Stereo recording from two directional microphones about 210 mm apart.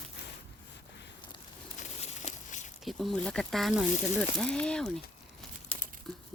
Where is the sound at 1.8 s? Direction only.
35° left (ahead or behind).